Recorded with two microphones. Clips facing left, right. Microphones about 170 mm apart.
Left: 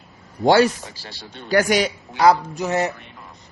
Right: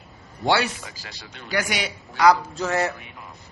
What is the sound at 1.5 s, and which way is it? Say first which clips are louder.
Speech: left 9 dB; 45° left (ahead or behind).